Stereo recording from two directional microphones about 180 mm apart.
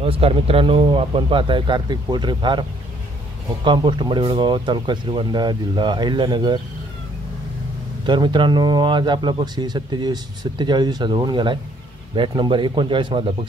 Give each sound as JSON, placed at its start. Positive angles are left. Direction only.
{"t": 0.0, "sound": "speech", "side_deg": -30}
{"t": 3.6, "sound": "speech", "side_deg": -25}
{"t": 8.1, "sound": "speech", "side_deg": -25}